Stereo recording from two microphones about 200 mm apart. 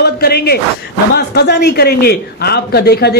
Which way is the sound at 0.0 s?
50° left (ahead or behind).